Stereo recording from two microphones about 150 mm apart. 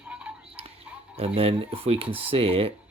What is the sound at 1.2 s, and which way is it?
Speech, 40° right (ahead or behind).